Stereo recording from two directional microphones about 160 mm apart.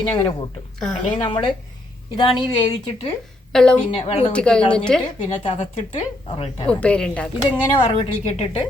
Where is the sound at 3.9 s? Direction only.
35° left (ahead or behind).